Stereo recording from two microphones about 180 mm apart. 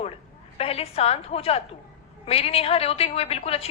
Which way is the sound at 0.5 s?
35° left (ahead or behind).